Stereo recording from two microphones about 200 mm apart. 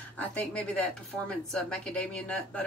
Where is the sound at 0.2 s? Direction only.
5° left (ahead or behind).